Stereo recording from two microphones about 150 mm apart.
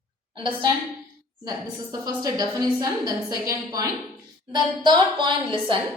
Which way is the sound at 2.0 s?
25° right (ahead or behind).